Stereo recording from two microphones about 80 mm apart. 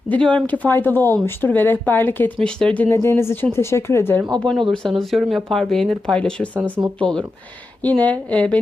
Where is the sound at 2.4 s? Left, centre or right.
Centre.